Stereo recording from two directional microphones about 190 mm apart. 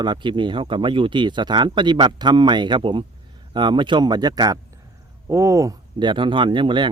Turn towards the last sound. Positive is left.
turn(degrees=-25)  # may be behind; listen again after turning